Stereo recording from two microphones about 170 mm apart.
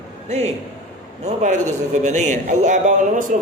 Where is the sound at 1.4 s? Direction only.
45° right (ahead or behind).